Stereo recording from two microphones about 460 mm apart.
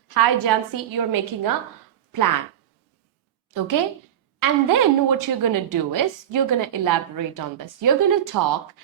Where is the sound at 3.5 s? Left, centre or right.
Right.